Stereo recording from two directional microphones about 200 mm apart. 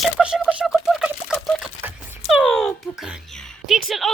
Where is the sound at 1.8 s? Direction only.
10° right (ahead or behind).